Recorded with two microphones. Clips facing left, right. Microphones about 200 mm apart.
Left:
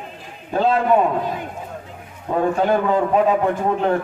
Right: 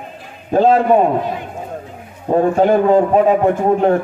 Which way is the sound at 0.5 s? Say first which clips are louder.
Right 5 dB; 40° right (ahead or behind).